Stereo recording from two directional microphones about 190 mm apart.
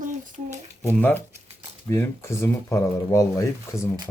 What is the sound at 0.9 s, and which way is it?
Speech, 10° left (ahead or behind).